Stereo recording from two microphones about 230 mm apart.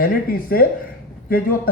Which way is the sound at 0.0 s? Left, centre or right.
Left.